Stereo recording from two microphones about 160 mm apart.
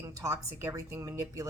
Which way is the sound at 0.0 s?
20° right (ahead or behind).